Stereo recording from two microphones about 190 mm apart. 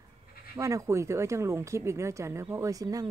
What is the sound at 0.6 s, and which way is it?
Speech, 15° right (ahead or behind).